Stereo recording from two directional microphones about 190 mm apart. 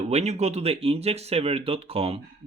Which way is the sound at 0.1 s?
35° right (ahead or behind).